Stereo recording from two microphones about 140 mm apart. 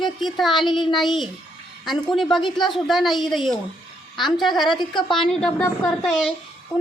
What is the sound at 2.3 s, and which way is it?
Speech, 35° left (ahead or behind).